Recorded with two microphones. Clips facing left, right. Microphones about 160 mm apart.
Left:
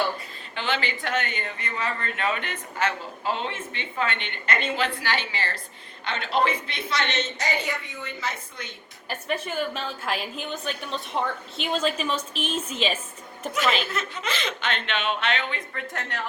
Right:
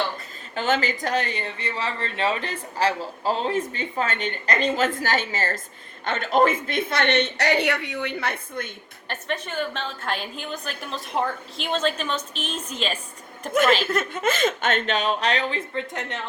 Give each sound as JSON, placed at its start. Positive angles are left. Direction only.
{"t": 0.5, "sound": "a woman's voice", "side_deg": -45}
{"t": 9.0, "sound": "a woman's voice", "side_deg": 5}
{"t": 13.8, "sound": "speech", "side_deg": -50}
{"t": 15.7, "sound": "speech", "side_deg": -20}